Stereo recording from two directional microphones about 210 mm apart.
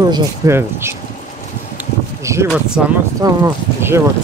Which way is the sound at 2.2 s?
10° right (ahead or behind).